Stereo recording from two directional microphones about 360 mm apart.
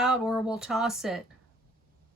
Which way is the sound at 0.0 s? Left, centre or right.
Centre.